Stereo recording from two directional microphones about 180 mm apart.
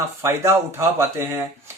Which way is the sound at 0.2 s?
15° right (ahead or behind).